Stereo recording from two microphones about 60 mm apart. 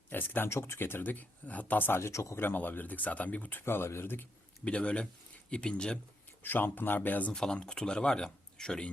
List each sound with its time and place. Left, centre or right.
0.1 s speech: left
2.0 s speech: left
2.4 s speech: left
3.6 s speech: left
4.6 s speech: centre
6.4 s speech: left
7.3 s speech: centre